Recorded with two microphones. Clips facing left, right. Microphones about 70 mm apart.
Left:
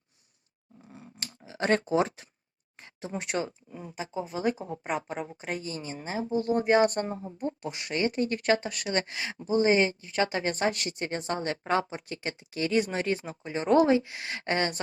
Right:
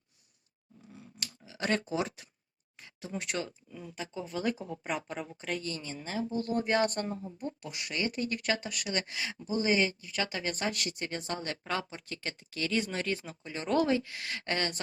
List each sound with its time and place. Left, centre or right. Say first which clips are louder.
0.9 s a sound: left 2 dB; left
2.8 s speech: left 3 dB; left
3.9 s speech: left 4 dB; centre
4.9 s speech: left 4 dB; centre; by 14.8 s left